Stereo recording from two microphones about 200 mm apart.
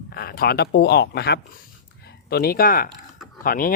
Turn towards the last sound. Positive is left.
turn(degrees=45)  # may be behind; listen again after turning